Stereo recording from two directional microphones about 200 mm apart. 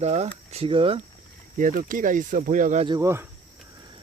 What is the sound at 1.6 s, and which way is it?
Speech, 45° right (ahead or behind).